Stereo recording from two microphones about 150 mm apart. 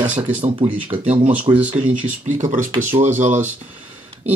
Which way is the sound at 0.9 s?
45° right (ahead or behind).